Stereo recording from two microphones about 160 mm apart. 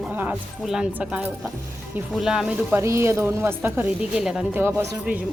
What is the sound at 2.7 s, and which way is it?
A woman's voice, 15° right (ahead or behind).